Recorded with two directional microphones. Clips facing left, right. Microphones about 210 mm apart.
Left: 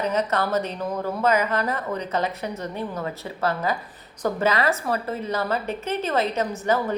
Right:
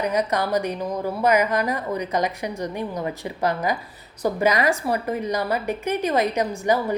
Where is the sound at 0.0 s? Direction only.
15° right (ahead or behind).